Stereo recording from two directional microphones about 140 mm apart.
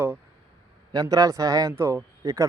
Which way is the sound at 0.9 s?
25° right (ahead or behind).